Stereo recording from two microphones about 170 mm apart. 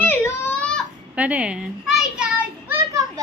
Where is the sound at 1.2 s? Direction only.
10° right (ahead or behind).